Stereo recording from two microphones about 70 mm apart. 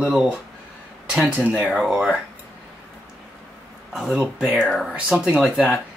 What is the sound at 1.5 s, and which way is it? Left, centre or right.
Speech, centre.